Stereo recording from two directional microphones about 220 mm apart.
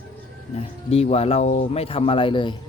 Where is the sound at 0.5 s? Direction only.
25° left (ahead or behind).